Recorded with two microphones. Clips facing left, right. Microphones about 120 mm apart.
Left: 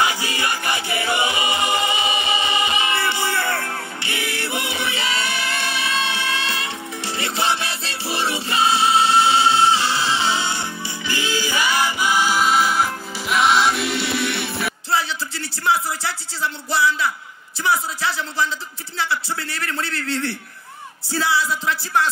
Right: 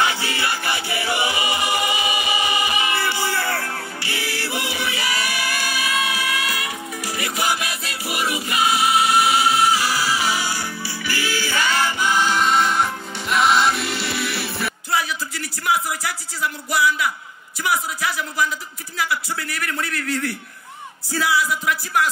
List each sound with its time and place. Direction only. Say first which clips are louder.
0.0 s music: even; 15° left (ahead or behind); by 14.7 s centre (ahead or behind)
14.9 s music: left 1 dB; 30° left (ahead or behind)
17.6 s a man's voice: left 2 dB; 30° left (ahead or behind)